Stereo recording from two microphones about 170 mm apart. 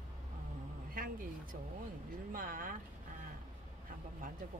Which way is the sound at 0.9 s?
55° right (ahead or behind).